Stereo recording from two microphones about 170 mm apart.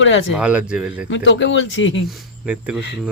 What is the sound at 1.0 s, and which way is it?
Speech, 90° left.